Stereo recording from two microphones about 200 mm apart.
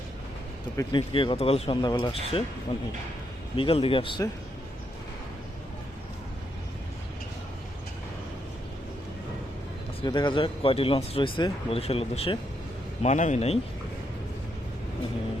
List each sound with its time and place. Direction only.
0.8 s speech: 25° left (ahead or behind)
10.0 s a man's voice: 25° left (ahead or behind)